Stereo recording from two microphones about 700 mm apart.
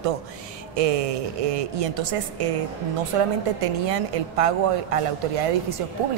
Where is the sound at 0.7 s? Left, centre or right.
Right.